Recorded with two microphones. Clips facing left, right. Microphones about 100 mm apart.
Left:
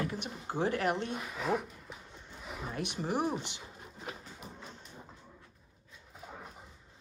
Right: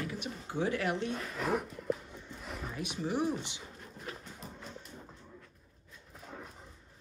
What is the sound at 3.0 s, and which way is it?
Speech, 50° left (ahead or behind).